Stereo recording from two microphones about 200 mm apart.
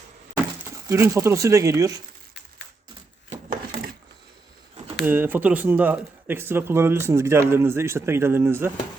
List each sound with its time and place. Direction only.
0.9 s speech: 15° right (ahead or behind)
3.2 s wood: 30° right (ahead or behind)
5.0 s speech: 10° right (ahead or behind)